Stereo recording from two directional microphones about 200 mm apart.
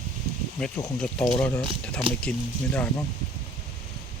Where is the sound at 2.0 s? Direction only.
25° right (ahead or behind).